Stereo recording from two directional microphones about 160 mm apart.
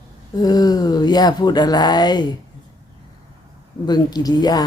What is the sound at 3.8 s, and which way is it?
Speech, 25° left (ahead or behind).